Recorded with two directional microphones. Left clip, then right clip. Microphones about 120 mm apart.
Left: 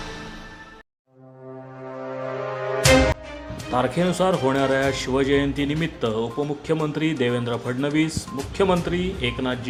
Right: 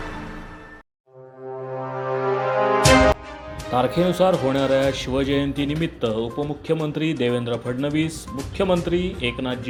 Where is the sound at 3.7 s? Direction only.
30° right (ahead or behind).